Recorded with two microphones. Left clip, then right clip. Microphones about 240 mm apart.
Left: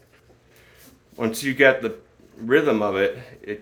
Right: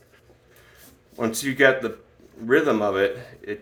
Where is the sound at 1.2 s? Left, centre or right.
Left.